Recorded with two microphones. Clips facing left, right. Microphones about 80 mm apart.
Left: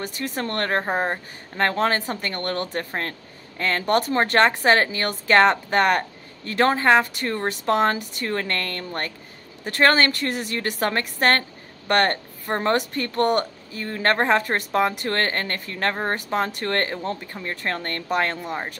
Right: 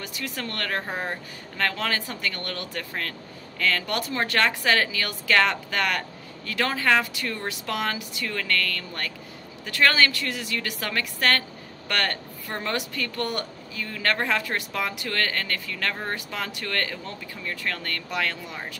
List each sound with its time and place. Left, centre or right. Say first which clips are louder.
0.0 s speech: left 5 dB; left